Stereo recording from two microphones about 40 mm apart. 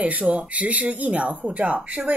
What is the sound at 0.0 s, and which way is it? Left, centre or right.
Speech, right.